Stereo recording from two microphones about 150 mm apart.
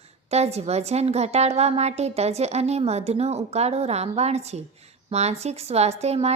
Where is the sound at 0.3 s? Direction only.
45° right (ahead or behind).